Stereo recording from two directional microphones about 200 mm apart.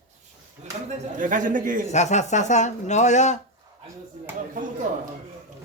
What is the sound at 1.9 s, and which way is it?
Speech, 35° left (ahead or behind).